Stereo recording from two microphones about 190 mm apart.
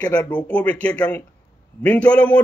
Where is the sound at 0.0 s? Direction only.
5° left (ahead or behind).